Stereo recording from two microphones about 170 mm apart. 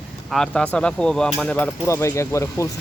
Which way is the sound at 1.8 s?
15° left (ahead or behind).